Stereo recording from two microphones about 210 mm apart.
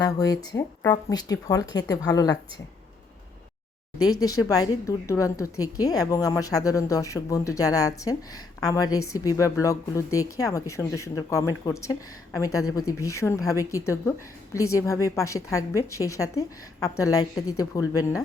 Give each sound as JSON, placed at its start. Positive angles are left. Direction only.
{"t": 0.0, "sound": "a woman's voice", "side_deg": 15}
{"t": 4.4, "sound": "a woman's voice", "side_deg": 15}